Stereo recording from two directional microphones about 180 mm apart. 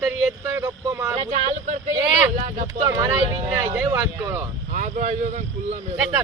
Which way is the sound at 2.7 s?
20° right (ahead or behind).